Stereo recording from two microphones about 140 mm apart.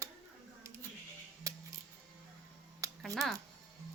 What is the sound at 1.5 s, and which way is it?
Music, 20° right (ahead or behind).